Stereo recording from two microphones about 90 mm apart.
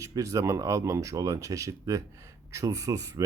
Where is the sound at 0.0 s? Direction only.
35° right (ahead or behind).